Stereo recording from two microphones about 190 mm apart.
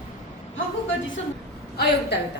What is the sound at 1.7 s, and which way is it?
Speech, 60° left (ahead or behind).